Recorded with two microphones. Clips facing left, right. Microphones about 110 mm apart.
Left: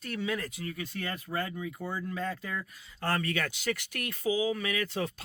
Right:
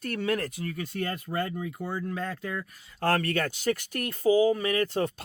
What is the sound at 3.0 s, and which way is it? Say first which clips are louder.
Speech: right 5 dB; 70° right (ahead or behind).